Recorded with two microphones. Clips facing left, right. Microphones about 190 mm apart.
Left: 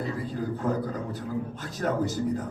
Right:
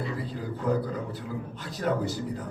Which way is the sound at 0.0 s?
45° left (ahead or behind).